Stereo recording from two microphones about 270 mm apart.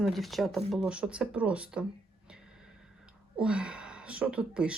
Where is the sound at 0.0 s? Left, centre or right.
Centre.